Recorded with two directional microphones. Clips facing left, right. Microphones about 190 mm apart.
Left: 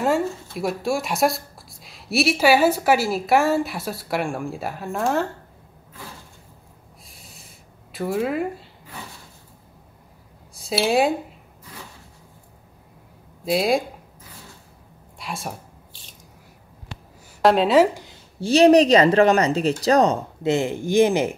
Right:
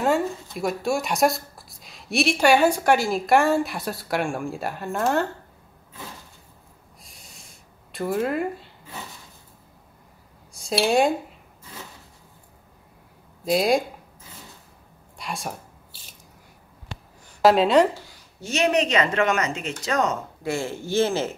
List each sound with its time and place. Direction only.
0.0 s a woman's voice: centre (ahead or behind)
7.1 s snort: centre (ahead or behind)
7.9 s a woman's voice: centre (ahead or behind)
10.5 s speech: centre (ahead or behind)
13.5 s a woman's voice: centre (ahead or behind)
15.1 s speech: centre (ahead or behind)
17.4 s a woman's voice: centre (ahead or behind)
17.9 s a sound: 20° left (ahead or behind)
18.4 s speech: 35° left (ahead or behind)
20.4 s a man's voice: 20° left (ahead or behind)